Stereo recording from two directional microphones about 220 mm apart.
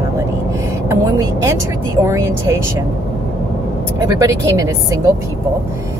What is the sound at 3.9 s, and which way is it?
Speech, 15° right (ahead or behind).